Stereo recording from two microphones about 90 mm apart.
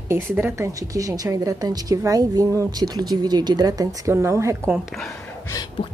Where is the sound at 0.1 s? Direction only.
25° right (ahead or behind).